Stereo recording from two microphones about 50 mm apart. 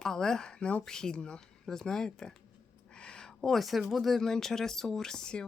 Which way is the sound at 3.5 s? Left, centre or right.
Centre.